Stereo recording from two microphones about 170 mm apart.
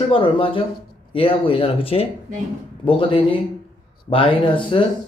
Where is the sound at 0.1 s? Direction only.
30° left (ahead or behind).